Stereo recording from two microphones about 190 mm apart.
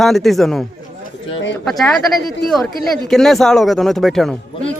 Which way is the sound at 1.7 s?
Centre (ahead or behind).